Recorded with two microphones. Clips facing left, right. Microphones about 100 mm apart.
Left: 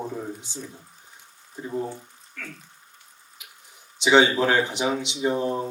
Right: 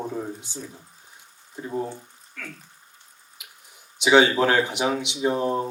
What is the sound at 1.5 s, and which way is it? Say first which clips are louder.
Speech: right 1 dB; 20° right (ahead or behind).